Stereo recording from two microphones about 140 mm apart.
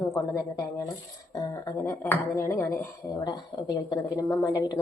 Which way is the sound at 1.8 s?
15° left (ahead or behind).